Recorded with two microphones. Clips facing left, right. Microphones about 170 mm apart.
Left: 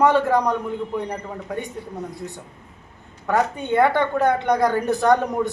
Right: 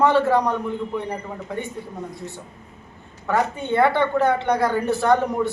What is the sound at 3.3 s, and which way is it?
A man's voice, 15° left (ahead or behind).